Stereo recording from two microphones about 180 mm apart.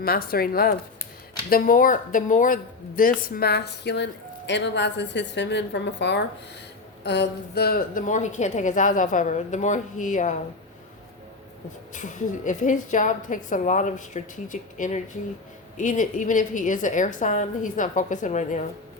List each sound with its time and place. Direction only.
0.0 s a woman's voice: 55° left (ahead or behind)
11.9 s a woman's voice: 45° left (ahead or behind)